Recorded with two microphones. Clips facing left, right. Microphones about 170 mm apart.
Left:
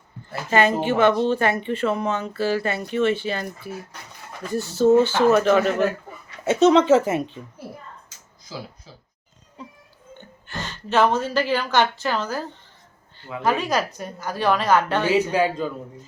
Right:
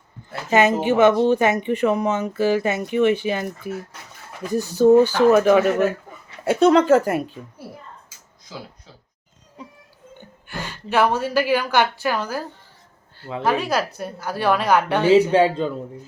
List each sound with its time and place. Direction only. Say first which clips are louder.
0.5 s speech: right 2 dB; 15° right (ahead or behind)
6.7 s a woman's voice: right 1 dB; centre (ahead or behind)
10.2 s a woman's voice: right 1 dB; 10° right (ahead or behind)
15.3 s speech: right 4 dB; 25° right (ahead or behind)